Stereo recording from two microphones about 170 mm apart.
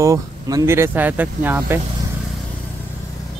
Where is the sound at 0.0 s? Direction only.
20° right (ahead or behind).